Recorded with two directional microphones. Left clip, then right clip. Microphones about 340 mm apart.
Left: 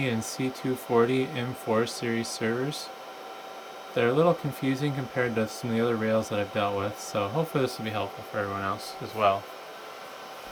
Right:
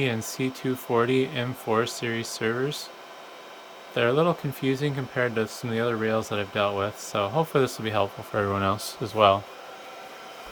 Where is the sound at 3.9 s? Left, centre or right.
Centre.